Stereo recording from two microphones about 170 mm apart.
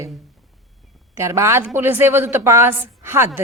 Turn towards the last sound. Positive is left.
turn(degrees=-15)  # may be behind; listen again after turning